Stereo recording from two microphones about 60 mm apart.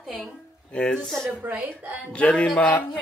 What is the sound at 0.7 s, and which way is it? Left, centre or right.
A man's voice, centre.